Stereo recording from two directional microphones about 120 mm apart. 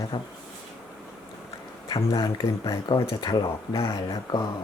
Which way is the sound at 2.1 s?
30° left (ahead or behind).